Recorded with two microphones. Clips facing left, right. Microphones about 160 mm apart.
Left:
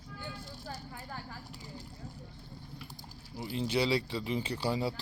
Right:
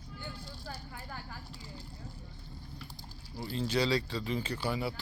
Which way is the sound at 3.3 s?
15° left (ahead or behind).